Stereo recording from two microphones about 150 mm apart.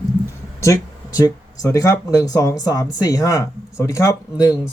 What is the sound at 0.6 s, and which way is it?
Speech, 20° left (ahead or behind).